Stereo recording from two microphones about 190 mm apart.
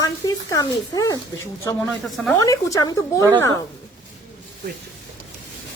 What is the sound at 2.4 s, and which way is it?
Speech, 15° left (ahead or behind).